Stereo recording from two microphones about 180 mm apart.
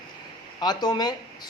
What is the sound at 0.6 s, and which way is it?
Speech, 25° left (ahead or behind).